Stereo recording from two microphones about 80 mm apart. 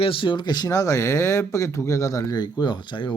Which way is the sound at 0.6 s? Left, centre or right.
Left.